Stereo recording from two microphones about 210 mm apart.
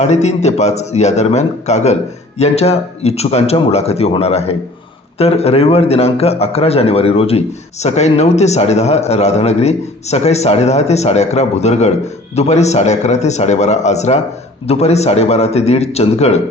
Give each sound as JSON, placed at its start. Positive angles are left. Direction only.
{"t": 0.0, "sound": "a man's voice", "side_deg": 30}